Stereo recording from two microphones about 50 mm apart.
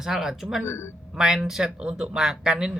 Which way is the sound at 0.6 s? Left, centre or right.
Left.